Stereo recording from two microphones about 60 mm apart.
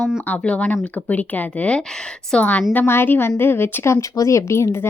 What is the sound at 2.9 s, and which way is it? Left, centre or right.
A woman's voice, left.